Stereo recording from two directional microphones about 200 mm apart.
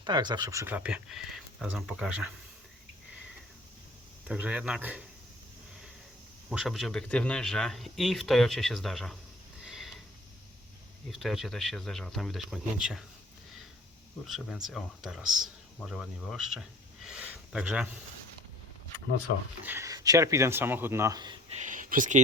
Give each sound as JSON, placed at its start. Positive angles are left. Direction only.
{"t": 0.0, "sound": "speech", "side_deg": -20}
{"t": 4.3, "sound": "speech", "side_deg": -5}
{"t": 6.5, "sound": "speech", "side_deg": 0}
{"t": 9.6, "sound": "sniff", "side_deg": 0}
{"t": 11.1, "sound": "speech", "side_deg": 0}
{"t": 14.3, "sound": "speech", "side_deg": 0}
{"t": 19.6, "sound": "speech", "side_deg": -15}
{"t": 21.6, "sound": "speech", "side_deg": -40}